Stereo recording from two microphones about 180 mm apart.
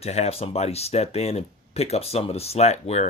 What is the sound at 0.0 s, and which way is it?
Speech, 35° left (ahead or behind).